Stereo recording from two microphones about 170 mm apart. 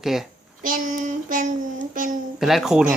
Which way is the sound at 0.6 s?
55° right (ahead or behind).